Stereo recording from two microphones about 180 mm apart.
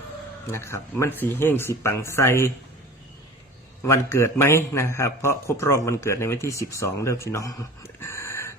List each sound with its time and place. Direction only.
0.5 s a man's voice: 15° left (ahead or behind)
3.8 s a man's voice: 15° left (ahead or behind)
7.9 s a sound: 15° left (ahead or behind)